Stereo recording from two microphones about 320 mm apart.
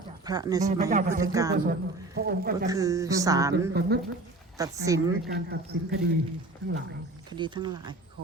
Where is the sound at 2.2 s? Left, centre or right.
Right.